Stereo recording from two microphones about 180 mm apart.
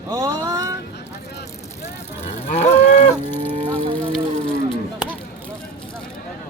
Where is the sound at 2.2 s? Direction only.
35° left (ahead or behind).